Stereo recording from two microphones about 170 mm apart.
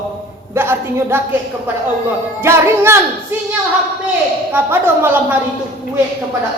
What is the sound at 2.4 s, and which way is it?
Speech, 15° right (ahead or behind).